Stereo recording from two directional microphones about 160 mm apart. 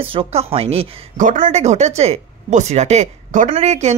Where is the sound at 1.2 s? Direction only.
55° right (ahead or behind).